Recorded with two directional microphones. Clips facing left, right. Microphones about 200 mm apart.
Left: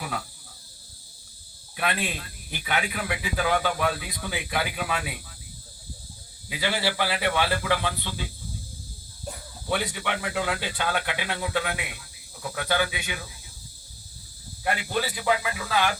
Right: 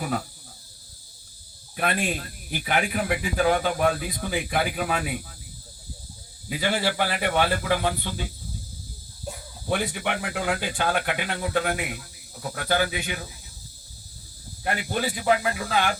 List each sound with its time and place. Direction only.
0.0 s cricket: 45° right (ahead or behind)
1.7 s speech: 45° right (ahead or behind)
6.5 s speech: 50° right (ahead or behind)
9.6 s speech: 50° right (ahead or behind)
14.8 s speech: 50° right (ahead or behind)